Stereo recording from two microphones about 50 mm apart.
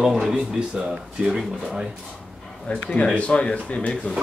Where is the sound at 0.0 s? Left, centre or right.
Centre.